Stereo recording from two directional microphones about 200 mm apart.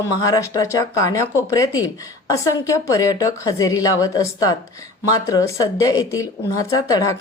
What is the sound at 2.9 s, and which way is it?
Speech, 15° left (ahead or behind).